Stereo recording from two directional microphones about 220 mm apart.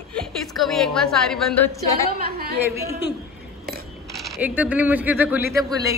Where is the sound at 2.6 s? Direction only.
10° right (ahead or behind).